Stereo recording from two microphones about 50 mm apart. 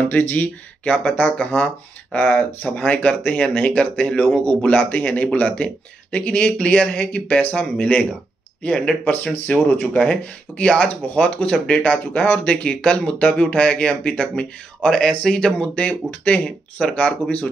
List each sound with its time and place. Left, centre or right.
0.1 s speech: left
1.3 s speech: left
2.1 s speech: left
8.6 s speech: centre
9.0 s speech: left
10.8 s speech: left
14.9 s speech: centre
15.7 s speech: left